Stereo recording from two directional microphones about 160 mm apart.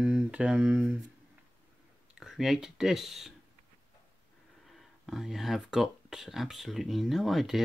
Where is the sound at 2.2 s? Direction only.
5° right (ahead or behind).